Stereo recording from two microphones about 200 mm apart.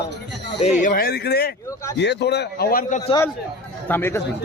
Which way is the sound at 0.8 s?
45° left (ahead or behind).